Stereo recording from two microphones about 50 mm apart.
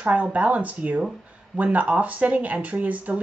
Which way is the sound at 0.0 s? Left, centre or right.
Right.